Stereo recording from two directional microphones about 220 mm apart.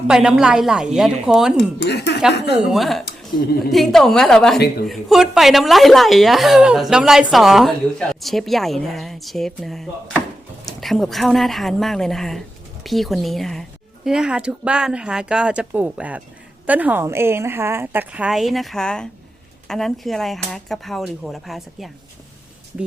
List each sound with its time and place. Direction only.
0.1 s speech: 5° right (ahead or behind)
1.8 s speech: 50° left (ahead or behind)
2.6 s speech: centre (ahead or behind)
3.0 s speech: 45° left (ahead or behind)
3.6 s a woman's voice: centre (ahead or behind)